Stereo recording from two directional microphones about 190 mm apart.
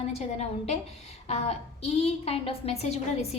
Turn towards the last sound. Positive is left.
turn(degrees=35)  # may be behind; listen again after turning